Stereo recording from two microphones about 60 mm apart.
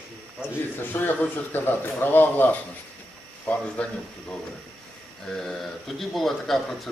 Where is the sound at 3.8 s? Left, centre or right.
Centre.